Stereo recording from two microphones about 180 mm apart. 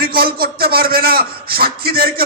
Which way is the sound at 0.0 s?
55° right (ahead or behind).